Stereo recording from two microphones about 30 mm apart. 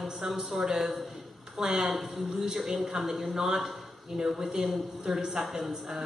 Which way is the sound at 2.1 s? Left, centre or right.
Centre.